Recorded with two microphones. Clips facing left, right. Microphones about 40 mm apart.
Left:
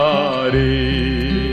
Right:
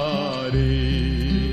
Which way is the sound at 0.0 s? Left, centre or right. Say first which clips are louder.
Left 9 dB; left.